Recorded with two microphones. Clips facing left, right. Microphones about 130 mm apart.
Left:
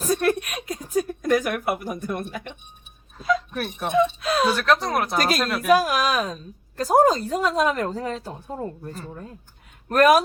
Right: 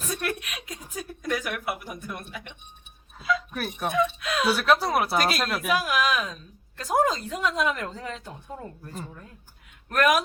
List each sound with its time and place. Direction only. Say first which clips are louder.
0.0 s a sound: left 9 dB; 35° left (ahead or behind)
3.8 s a woman's voice: left 5 dB; 30° left (ahead or behind)
4.5 s speech: left 1 dB; 5° right (ahead or behind)
5.1 s a woman's voice: left 2 dB; 40° left (ahead or behind)